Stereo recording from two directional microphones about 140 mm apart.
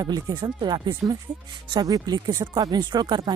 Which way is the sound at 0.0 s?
30° right (ahead or behind).